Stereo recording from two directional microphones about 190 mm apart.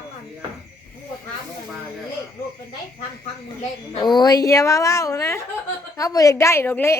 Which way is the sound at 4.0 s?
20° left (ahead or behind).